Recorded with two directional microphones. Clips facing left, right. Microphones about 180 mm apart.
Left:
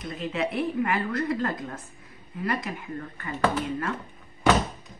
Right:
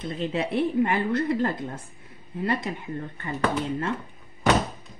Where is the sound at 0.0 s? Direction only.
30° right (ahead or behind).